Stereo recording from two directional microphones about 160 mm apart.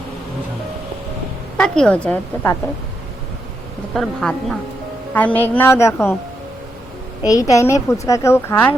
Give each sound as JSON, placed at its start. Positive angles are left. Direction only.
{"t": 1.5, "sound": "a woman's voice", "side_deg": 5}
{"t": 3.9, "sound": "a woman's voice", "side_deg": 5}
{"t": 7.3, "sound": "a woman's voice", "side_deg": 20}